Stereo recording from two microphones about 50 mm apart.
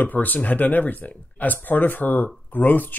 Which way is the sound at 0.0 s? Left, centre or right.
Left.